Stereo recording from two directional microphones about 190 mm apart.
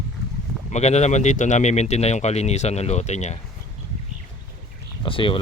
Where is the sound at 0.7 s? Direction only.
35° left (ahead or behind).